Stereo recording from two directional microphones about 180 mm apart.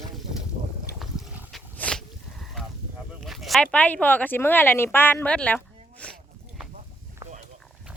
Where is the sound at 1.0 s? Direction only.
5° right (ahead or behind).